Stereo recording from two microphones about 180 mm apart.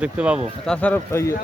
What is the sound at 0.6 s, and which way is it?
Speech, 5° left (ahead or behind).